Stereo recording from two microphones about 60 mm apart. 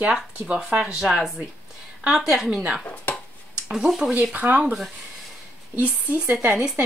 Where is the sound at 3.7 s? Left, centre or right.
Centre.